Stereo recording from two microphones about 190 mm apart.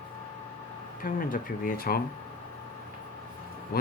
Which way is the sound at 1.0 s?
45° left (ahead or behind).